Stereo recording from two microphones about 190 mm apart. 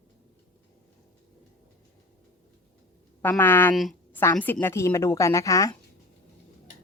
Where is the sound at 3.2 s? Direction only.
10° left (ahead or behind).